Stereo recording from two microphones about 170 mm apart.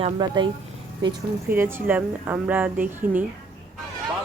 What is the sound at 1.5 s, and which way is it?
A woman's voice, 15° right (ahead or behind).